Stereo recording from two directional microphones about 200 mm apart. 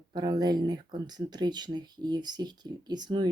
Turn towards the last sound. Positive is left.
turn(degrees=-20)  # may be behind; listen again after turning